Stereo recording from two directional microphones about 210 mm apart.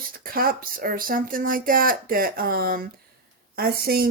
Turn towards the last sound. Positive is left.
turn(degrees=-45)  # may be behind; listen again after turning